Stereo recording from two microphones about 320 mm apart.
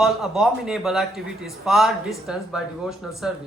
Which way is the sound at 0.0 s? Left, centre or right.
Centre.